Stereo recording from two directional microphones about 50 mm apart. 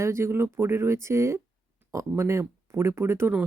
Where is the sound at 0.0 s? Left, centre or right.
Right.